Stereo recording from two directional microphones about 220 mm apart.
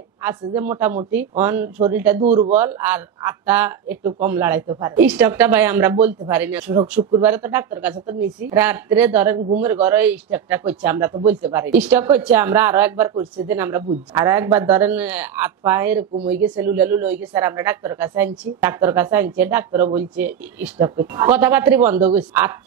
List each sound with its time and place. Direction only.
0.2 s speech: 10° right (ahead or behind)
2.2 s a man's voice: 30° right (ahead or behind)
2.5 s speech: 10° right (ahead or behind)